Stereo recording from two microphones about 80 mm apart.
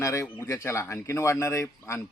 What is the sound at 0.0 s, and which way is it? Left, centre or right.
Speech, left.